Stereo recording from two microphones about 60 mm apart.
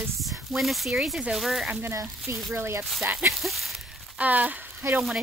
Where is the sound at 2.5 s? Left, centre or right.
Right.